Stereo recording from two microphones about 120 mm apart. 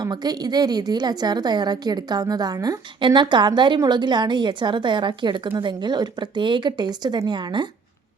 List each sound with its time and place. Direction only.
0.0 s a woman's voice: 35° right (ahead or behind)